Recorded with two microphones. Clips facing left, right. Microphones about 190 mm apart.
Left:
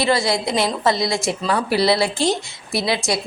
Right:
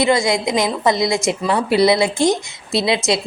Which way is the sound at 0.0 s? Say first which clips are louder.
Right 3 dB; 20° right (ahead or behind).